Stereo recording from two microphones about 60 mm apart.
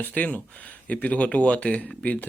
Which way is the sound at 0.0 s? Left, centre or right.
Left.